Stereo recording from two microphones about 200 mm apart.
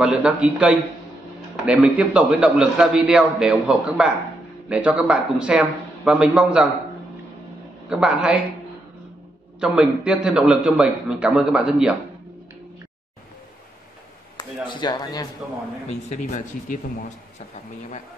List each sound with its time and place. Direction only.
0.0 s a man's voice: 5° right (ahead or behind)
7.9 s a man's voice: 5° right (ahead or behind)
9.6 s a man's voice: 5° right (ahead or behind)
14.7 s speech: 20° left (ahead or behind)
15.9 s speech: 35° left (ahead or behind)